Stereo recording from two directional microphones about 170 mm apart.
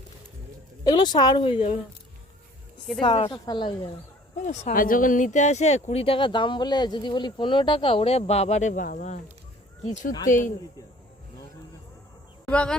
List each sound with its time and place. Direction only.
0.9 s speech: 25° left (ahead or behind)
3.0 s speech: 30° left (ahead or behind)
4.4 s speech: 45° left (ahead or behind)
12.5 s speech: 5° left (ahead or behind)